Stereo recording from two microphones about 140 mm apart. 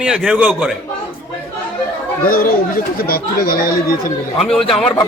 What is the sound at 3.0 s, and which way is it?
Speech, 90° left.